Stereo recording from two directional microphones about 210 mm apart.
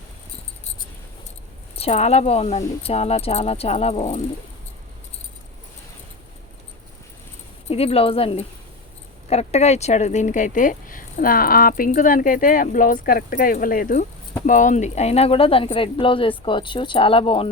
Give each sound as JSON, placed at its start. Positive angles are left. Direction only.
{"t": 1.7, "sound": "speech", "side_deg": 30}
{"t": 7.7, "sound": "speech", "side_deg": 30}